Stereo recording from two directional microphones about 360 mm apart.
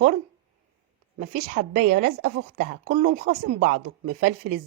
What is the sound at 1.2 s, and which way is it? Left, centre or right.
Speech, right.